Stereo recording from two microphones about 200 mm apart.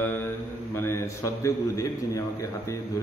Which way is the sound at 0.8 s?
15° left (ahead or behind).